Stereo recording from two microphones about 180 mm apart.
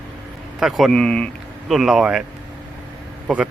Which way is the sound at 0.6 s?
Centre (ahead or behind).